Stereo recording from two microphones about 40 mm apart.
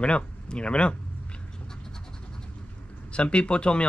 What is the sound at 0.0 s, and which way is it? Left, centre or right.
Speech, left.